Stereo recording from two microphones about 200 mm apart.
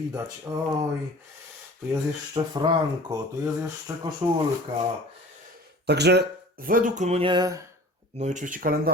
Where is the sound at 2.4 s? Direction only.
25° right (ahead or behind).